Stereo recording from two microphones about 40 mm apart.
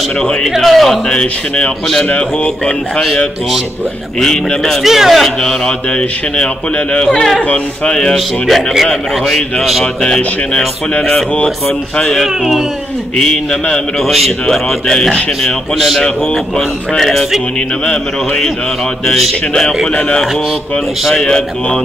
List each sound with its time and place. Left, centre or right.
0.6 s a man's voice: centre
1.0 s speech: left
4.2 s a man's voice: centre
4.8 s a man's voice: centre
5.4 s a man's voice: centre
5.9 s speech: left
7.1 s a man's voice: centre
7.3 s speech: left
8.5 s a man's voice: centre
10.0 s a man's voice: left
13.2 s a man's voice: centre
16.5 s a man's voice: centre
19.5 s a man's voice: centre
21.2 s speech: left